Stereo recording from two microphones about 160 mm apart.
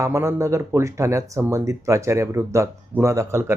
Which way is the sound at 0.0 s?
20° right (ahead or behind).